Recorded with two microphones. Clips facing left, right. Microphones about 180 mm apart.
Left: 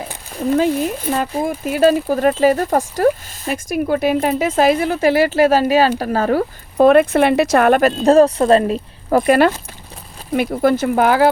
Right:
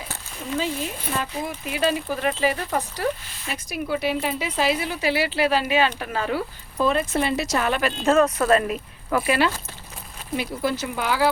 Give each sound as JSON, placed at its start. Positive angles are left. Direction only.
{"t": 0.5, "sound": "speech", "side_deg": 55}
{"t": 6.7, "sound": "speech", "side_deg": 60}
{"t": 9.1, "sound": "speech", "side_deg": 45}